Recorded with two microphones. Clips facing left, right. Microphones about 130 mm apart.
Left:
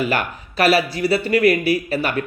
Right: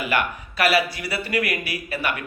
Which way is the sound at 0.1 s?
30° left (ahead or behind).